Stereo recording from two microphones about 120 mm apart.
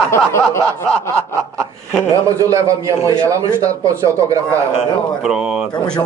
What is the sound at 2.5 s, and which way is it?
A man's voice, 25° right (ahead or behind).